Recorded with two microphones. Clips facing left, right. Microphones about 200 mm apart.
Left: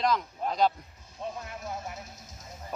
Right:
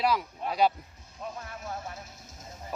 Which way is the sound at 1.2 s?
20° left (ahead or behind).